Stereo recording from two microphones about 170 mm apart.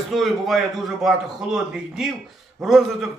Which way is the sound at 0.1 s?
Centre (ahead or behind).